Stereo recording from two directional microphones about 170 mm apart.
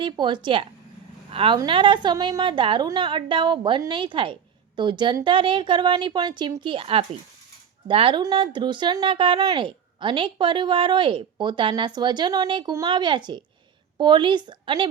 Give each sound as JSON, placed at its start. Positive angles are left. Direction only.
{"t": 0.0, "sound": "speech", "side_deg": -30}